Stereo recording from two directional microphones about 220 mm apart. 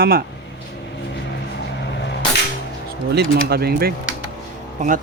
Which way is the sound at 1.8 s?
50° left (ahead or behind).